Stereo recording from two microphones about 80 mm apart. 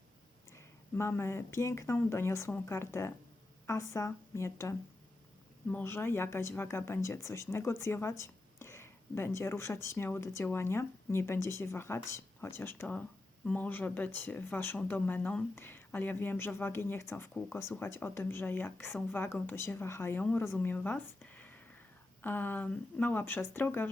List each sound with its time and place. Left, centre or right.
0.5 s speech: left
5.8 s speech: left